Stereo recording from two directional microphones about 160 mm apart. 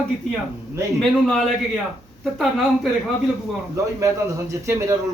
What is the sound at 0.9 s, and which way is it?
Speech, centre (ahead or behind).